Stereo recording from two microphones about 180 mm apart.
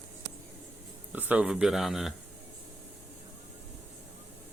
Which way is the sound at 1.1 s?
5° right (ahead or behind).